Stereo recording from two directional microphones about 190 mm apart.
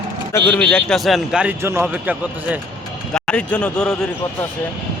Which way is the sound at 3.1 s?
5° left (ahead or behind).